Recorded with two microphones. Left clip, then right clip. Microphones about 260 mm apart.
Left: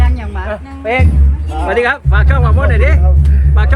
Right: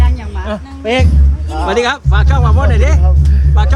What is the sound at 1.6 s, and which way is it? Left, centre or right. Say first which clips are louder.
Speech: left 1 dB; centre.